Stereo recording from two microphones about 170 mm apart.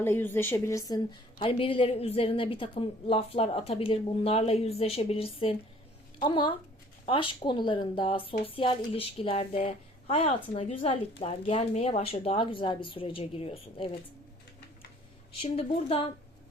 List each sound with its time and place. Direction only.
0.0 s a woman's voice: 15° left (ahead or behind); by 13.9 s 35° left (ahead or behind)
15.4 s a woman's voice: 35° left (ahead or behind)